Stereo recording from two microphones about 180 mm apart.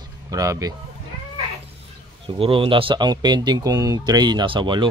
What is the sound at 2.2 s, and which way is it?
Speech, 30° right (ahead or behind).